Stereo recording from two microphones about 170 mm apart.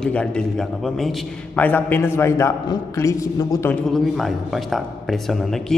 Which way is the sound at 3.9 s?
Centre (ahead or behind).